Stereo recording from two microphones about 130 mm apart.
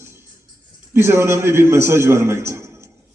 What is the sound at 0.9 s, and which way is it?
A man's voice, 20° right (ahead or behind).